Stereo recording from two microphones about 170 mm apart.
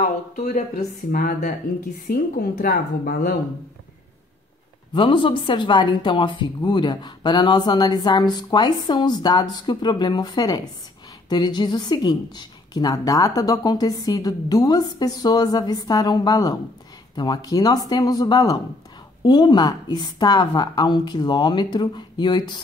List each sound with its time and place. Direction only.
0.0 s a woman's voice: 50° left (ahead or behind)
4.9 s a woman's voice: 30° left (ahead or behind)